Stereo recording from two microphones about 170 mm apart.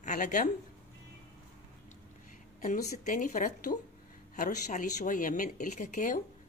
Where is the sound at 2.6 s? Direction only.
50° left (ahead or behind).